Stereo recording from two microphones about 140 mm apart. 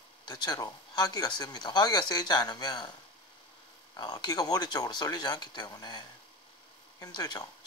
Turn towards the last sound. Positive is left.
turn(degrees=30)  # may be behind; listen again after turning